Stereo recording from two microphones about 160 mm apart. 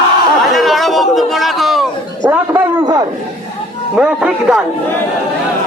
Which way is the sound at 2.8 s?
25° right (ahead or behind).